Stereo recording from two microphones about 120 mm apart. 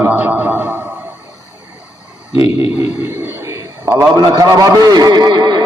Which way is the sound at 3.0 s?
20° right (ahead or behind).